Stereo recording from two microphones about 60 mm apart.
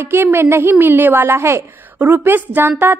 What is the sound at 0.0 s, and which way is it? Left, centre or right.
A woman's voice, right.